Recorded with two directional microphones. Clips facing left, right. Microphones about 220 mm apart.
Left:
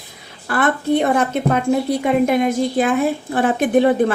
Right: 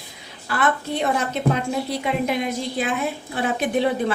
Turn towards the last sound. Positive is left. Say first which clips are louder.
# left 7 dB
turn(degrees=50)  # may be behind; listen again after turning